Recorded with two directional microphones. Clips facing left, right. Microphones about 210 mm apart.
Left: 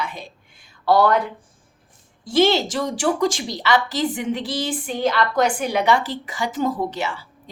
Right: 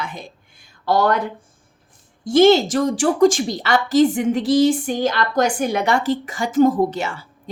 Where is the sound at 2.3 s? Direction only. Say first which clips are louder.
Right 5 dB; 45° right (ahead or behind).